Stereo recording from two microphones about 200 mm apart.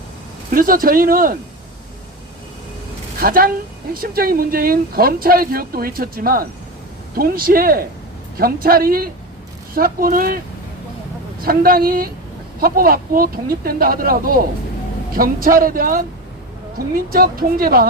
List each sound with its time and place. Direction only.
0.5 s speech: 45° right (ahead or behind)
3.2 s a woman's voice: 45° right (ahead or behind)
11.4 s speech: 45° right (ahead or behind)